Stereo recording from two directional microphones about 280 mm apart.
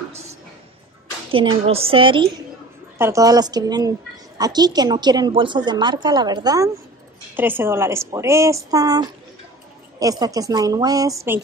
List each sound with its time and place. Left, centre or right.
1.3 s a woman's voice: centre